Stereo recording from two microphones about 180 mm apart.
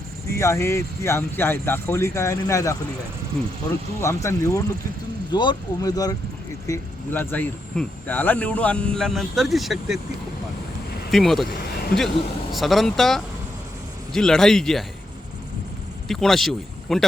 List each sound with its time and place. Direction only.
0.3 s speech: 15° left (ahead or behind)
4.0 s speech: 15° left (ahead or behind); by 10.0 s centre (ahead or behind)
11.1 s a man's voice: centre (ahead or behind)
11.5 s a sound: 60° left (ahead or behind)
11.9 s a man's voice: centre (ahead or behind)
16.0 s speech: centre (ahead or behind)